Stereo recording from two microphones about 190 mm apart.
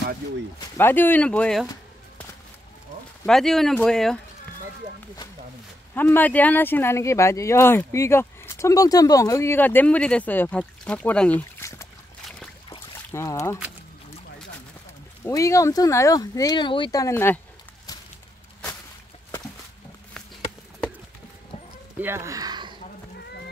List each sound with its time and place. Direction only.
0.7 s speech: 10° left (ahead or behind)
3.3 s speech: centre (ahead or behind)
5.9 s speech: 10° left (ahead or behind)
13.1 s speech: 15° left (ahead or behind)
15.2 s speech: 15° left (ahead or behind)
22.0 s a sound: 15° right (ahead or behind)